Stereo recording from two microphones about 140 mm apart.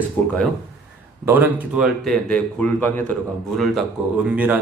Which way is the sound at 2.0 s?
5° left (ahead or behind).